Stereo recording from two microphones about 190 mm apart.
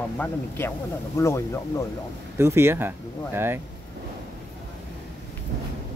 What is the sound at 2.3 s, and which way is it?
Speech, 15° right (ahead or behind).